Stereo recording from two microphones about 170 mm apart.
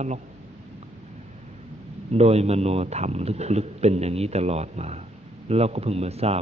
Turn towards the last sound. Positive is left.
turn(degrees=-35)  # may be behind; listen again after turning